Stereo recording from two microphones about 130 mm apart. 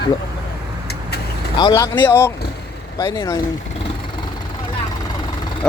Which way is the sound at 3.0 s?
40° left (ahead or behind).